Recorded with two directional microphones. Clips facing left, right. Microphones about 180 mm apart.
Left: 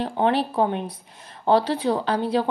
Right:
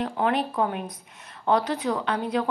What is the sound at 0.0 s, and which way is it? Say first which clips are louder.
Speech: left 3 dB; 30° left (ahead or behind).